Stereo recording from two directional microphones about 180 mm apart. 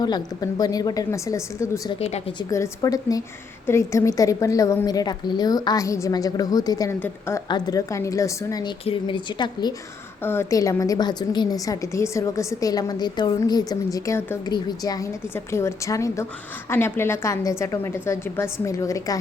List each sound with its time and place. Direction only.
0.0 s a woman's voice: 20° left (ahead or behind)
2.0 s speech: 35° left (ahead or behind)
2.5 s a woman's voice: 20° left (ahead or behind)